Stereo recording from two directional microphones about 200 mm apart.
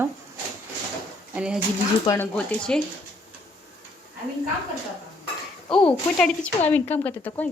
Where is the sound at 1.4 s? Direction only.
5° right (ahead or behind).